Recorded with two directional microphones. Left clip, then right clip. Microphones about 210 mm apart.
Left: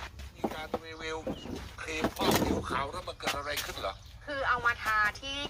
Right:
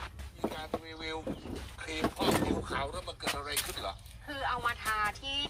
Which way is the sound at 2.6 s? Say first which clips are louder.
Left 2 dB; 15° left (ahead or behind).